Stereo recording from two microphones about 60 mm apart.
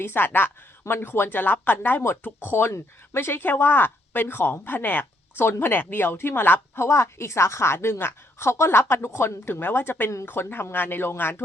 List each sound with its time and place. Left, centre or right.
0.0 s a woman's voice: left
6.7 s a woman's voice: left